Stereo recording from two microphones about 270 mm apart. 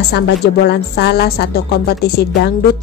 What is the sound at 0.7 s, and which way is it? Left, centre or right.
A woman's voice, left.